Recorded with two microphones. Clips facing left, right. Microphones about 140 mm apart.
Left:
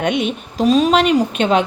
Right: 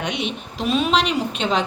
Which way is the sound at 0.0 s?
50° left (ahead or behind).